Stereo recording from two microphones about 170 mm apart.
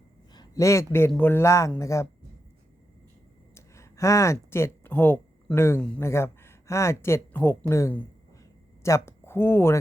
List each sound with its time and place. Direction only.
0.3 s speech: 20° left (ahead or behind)
3.5 s a sound: 15° left (ahead or behind)
5.8 s speech: 10° left (ahead or behind)
9.0 s speech: 15° left (ahead or behind)